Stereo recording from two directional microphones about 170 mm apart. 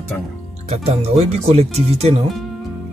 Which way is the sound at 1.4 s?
40° right (ahead or behind).